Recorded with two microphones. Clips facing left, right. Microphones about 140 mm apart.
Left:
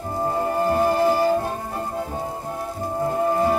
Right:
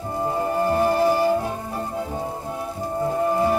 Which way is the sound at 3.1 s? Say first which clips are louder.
Even; centre (ahead or behind).